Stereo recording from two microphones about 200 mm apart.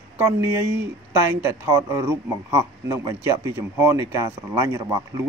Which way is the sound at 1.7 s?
15° right (ahead or behind).